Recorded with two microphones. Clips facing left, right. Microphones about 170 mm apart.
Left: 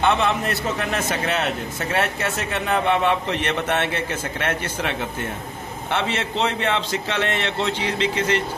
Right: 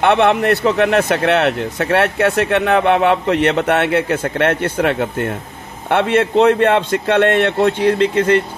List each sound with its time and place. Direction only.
0.0 s speech: 70° right (ahead or behind)